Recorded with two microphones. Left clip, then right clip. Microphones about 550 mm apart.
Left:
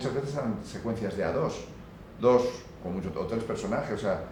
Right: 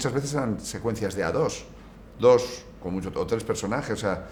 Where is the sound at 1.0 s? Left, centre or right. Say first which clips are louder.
Right 3 dB; right.